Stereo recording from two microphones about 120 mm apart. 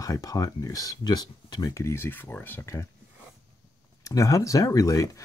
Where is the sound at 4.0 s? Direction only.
30° left (ahead or behind).